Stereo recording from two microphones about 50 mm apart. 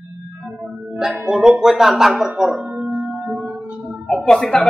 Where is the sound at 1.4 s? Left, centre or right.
Centre.